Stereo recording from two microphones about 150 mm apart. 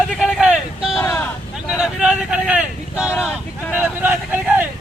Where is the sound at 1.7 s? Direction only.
5° right (ahead or behind).